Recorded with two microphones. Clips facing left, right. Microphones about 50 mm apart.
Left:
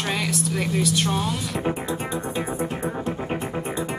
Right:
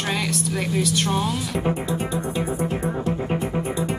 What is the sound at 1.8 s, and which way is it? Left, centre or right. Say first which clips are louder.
Music: right 2 dB; left.